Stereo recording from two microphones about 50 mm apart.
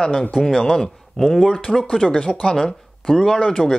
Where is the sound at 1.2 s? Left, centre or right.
Centre.